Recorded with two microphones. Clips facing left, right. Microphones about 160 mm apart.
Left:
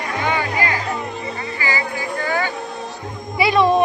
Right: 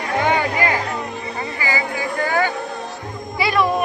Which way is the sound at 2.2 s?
40° right (ahead or behind).